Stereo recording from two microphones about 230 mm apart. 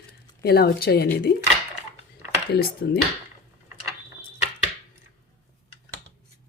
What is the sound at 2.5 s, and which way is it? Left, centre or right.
Speech, left.